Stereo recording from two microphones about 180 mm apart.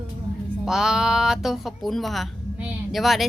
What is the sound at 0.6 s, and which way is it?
Speech, 5° right (ahead or behind).